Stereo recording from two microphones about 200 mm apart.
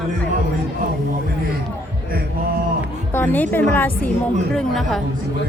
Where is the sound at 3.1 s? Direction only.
10° left (ahead or behind).